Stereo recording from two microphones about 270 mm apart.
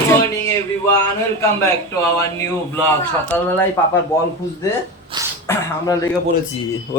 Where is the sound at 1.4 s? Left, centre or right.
Centre.